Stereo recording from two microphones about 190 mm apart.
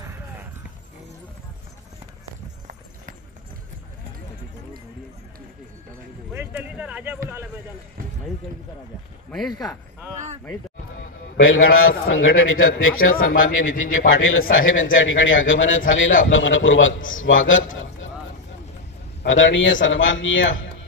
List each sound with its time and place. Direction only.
6.3 s a sound: 10° right (ahead or behind)
9.5 s speech: 20° left (ahead or behind)
11.3 s a man's voice: 90° left
19.2 s a man's voice: 85° left